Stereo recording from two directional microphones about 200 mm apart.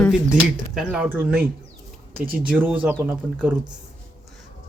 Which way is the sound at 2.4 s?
10° right (ahead or behind).